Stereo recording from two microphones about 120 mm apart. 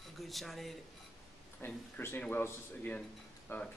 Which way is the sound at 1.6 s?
20° left (ahead or behind).